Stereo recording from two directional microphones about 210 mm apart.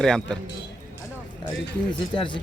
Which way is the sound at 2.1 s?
25° left (ahead or behind).